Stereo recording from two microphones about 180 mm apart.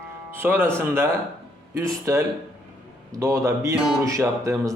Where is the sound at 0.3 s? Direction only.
10° right (ahead or behind).